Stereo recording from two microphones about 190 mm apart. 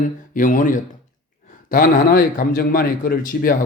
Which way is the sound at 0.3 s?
45° left (ahead or behind).